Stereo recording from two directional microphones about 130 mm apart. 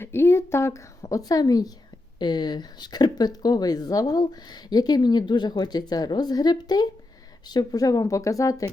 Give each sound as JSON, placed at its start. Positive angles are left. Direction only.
{"t": 0.0, "sound": "a woman's voice", "side_deg": 20}